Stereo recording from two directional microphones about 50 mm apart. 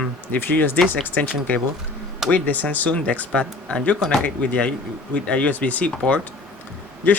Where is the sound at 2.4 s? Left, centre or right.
Left.